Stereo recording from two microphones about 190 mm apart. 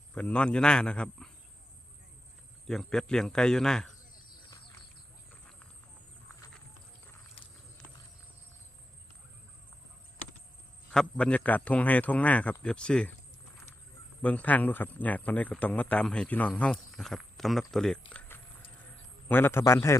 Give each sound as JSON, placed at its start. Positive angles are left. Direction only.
{"t": 0.1, "sound": "a man's voice", "side_deg": 5}
{"t": 2.6, "sound": "a man's voice", "side_deg": 0}
{"t": 10.9, "sound": "a man's voice", "side_deg": 5}
{"t": 14.2, "sound": "a man's voice", "side_deg": 5}
{"t": 18.1, "sound": "a sound", "side_deg": 5}
{"t": 19.3, "sound": "a man's voice", "side_deg": 10}